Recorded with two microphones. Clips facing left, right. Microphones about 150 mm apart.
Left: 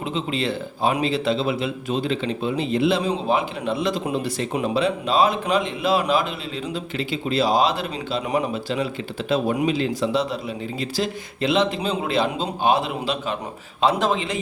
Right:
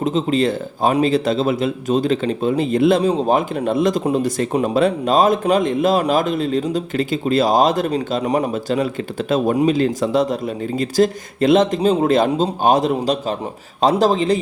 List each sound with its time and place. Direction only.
0.0 s a man's voice: 40° right (ahead or behind)